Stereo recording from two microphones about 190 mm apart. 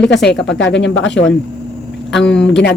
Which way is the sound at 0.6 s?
75° left (ahead or behind).